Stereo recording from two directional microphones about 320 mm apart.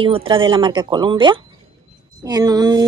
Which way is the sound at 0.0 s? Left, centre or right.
Centre.